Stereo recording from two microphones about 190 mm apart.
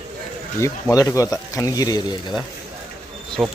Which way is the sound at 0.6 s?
15° left (ahead or behind).